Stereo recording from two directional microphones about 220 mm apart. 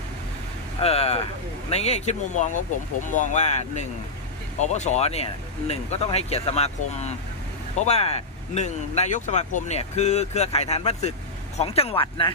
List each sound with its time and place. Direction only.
0.8 s speech: 25° left (ahead or behind)